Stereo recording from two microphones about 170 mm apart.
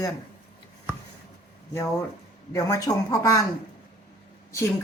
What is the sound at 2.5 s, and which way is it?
Speech, 20° left (ahead or behind).